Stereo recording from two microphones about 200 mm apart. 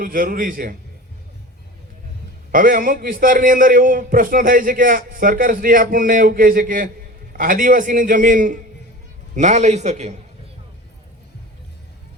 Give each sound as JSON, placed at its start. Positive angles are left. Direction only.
{"t": 0.0, "sound": "a man's voice", "side_deg": -45}
{"t": 2.5, "sound": "a man's voice", "side_deg": -45}